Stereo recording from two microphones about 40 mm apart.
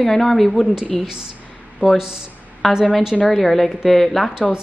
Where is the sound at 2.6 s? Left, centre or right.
Centre.